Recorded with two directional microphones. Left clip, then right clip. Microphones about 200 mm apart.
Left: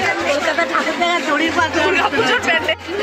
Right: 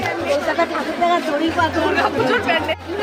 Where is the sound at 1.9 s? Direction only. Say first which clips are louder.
Left 2 dB; 30° left (ahead or behind).